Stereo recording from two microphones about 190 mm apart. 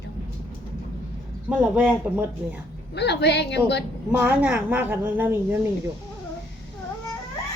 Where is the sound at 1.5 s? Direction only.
5° right (ahead or behind).